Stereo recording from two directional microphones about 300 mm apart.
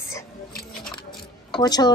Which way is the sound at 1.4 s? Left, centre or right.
Centre.